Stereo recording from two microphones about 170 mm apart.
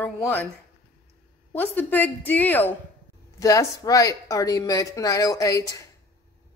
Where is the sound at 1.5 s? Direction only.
10° left (ahead or behind).